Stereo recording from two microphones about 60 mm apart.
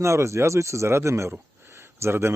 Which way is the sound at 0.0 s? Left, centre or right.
Right.